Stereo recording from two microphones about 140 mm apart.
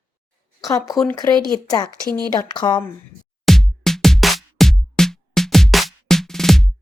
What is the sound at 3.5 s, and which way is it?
Music, centre (ahead or behind).